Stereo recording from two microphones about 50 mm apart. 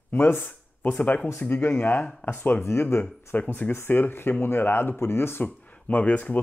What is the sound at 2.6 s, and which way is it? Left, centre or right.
Speech, left.